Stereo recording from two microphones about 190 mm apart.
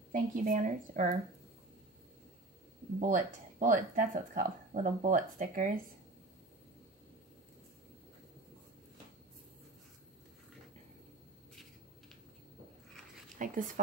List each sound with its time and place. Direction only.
0.1 s speech: 45° right (ahead or behind)
3.0 s speech: 45° right (ahead or behind)
13.4 s speech: 45° right (ahead or behind)